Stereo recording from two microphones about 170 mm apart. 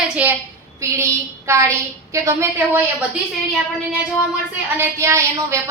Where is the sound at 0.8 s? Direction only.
15° right (ahead or behind).